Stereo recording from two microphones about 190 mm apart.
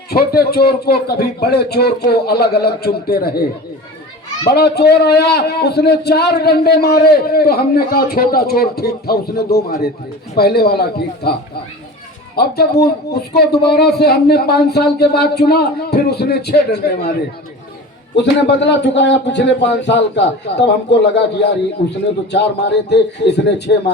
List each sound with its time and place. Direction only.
0.1 s a man's voice: 55° left (ahead or behind)
4.4 s a man's voice: 60° left (ahead or behind)
12.4 s a man's voice: 55° left (ahead or behind)
18.2 s a man's voice: 65° left (ahead or behind)
22.3 s a man's voice: 65° left (ahead or behind)